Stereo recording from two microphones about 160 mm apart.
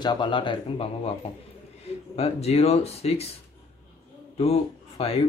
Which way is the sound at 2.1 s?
40° left (ahead or behind).